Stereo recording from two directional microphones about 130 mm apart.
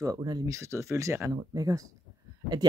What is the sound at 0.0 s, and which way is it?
Speech, 25° right (ahead or behind).